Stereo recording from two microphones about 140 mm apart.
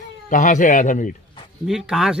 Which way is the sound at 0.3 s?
65° left (ahead or behind).